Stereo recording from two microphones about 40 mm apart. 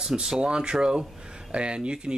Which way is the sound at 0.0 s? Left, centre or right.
Centre.